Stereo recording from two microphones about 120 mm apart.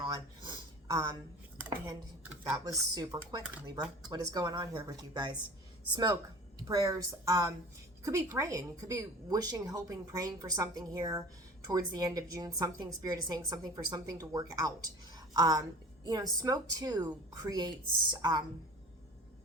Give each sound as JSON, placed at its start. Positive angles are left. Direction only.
{"t": 0.1, "sound": "a sound", "side_deg": -35}
{"t": 2.5, "sound": "a woman's voice", "side_deg": -30}
{"t": 6.6, "sound": "a woman's voice", "side_deg": -30}